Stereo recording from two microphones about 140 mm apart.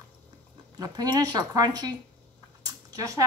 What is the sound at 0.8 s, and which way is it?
Speech, 30° right (ahead or behind).